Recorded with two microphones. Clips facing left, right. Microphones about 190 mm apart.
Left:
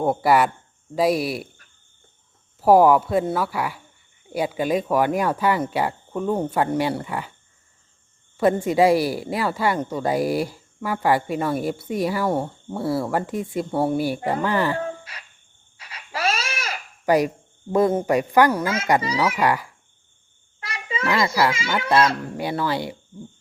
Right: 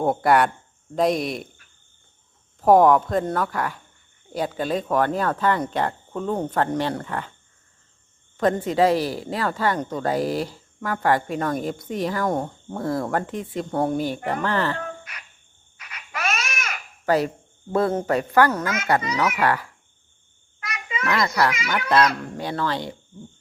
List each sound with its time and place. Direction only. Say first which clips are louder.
0.0 s speech: even; 5° left (ahead or behind)
2.6 s a woman's voice: left 1 dB; 5° left (ahead or behind)
8.4 s a woman's voice: left 2 dB; 10° left (ahead or behind)
14.8 s a sound: left 4 dB; 30° left (ahead or behind)
15.8 s crying: left 4 dB; 30° left (ahead or behind)
17.1 s a woman's voice: left 2 dB; 15° left (ahead or behind)
20.6 s a sound: left 2 dB; 30° left (ahead or behind)
21.1 s a woman's voice: left 1 dB; 10° left (ahead or behind)
21.5 s speech: left 1 dB; 25° left (ahead or behind)
22.2 s a woman's voice: left 2 dB; 10° left (ahead or behind)